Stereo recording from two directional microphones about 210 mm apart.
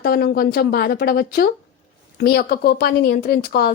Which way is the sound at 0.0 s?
45° left (ahead or behind).